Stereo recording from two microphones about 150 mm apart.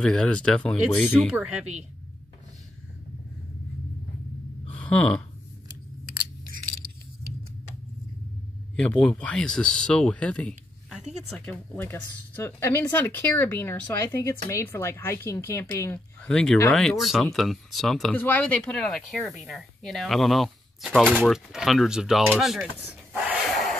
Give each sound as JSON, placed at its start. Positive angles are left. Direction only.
{"t": 0.0, "sound": "speech", "side_deg": 5}
{"t": 0.7, "sound": "speech", "side_deg": -5}
{"t": 4.6, "sound": "a sound", "side_deg": 10}
{"t": 8.7, "sound": "speech", "side_deg": 5}
{"t": 16.2, "sound": "speech", "side_deg": 5}
{"t": 22.4, "sound": "a sound", "side_deg": -5}